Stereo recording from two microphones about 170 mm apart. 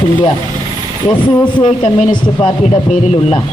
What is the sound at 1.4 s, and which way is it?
A man's voice, 30° left (ahead or behind).